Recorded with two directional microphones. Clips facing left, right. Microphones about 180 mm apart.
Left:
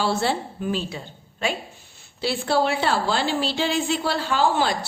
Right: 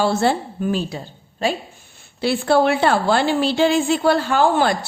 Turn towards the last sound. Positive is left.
turn(degrees=-55)  # may be behind; listen again after turning